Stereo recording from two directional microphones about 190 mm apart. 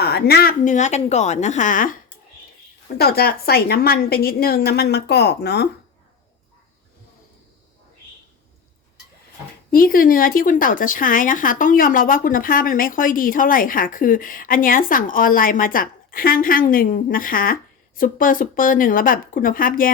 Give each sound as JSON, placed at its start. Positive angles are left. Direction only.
{"t": 0.0, "sound": "a woman's voice", "side_deg": 55}
{"t": 3.0, "sound": "a woman's voice", "side_deg": 55}
{"t": 9.7, "sound": "a woman's voice", "side_deg": 50}